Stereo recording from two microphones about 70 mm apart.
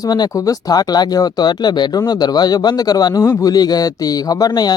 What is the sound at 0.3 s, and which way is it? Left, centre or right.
Speech, left.